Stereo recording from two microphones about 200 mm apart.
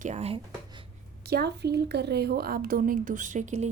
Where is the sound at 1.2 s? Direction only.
55° right (ahead or behind).